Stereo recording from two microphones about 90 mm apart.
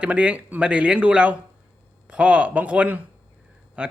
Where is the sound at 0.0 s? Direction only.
15° right (ahead or behind).